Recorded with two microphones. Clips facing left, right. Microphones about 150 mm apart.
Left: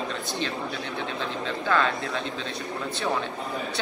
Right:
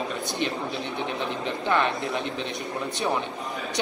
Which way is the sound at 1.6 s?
20° right (ahead or behind).